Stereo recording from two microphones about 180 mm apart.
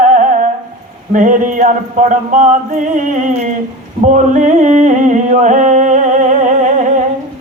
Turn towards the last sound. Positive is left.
turn(degrees=-45)  # may be behind; listen again after turning